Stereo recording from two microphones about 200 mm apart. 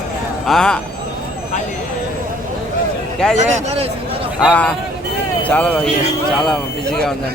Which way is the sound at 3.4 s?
30° right (ahead or behind).